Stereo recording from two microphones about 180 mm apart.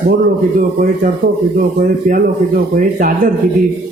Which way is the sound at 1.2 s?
55° right (ahead or behind).